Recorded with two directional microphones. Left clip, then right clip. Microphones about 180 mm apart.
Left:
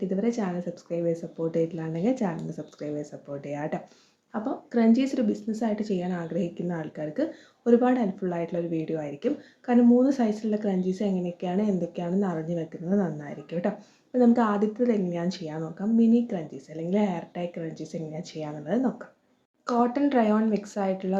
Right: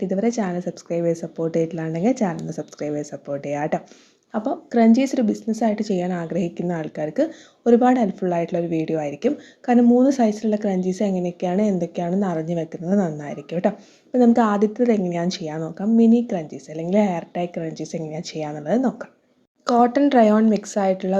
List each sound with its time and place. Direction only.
0.1 s speech: 35° right (ahead or behind)